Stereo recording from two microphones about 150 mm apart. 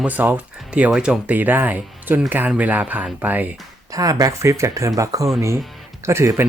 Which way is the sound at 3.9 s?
25° right (ahead or behind).